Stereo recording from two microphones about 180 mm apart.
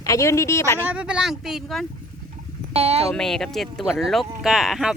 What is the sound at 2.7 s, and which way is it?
Speech, 35° right (ahead or behind).